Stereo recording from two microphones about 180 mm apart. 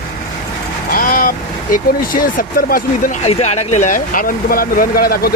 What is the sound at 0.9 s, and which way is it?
Speech, 55° left (ahead or behind).